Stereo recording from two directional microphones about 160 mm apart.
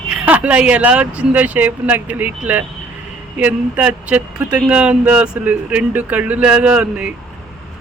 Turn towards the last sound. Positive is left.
turn(degrees=-5)  # may be behind; listen again after turning